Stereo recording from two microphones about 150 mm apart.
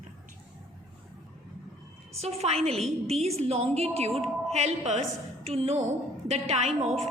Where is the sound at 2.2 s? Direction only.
45° right (ahead or behind).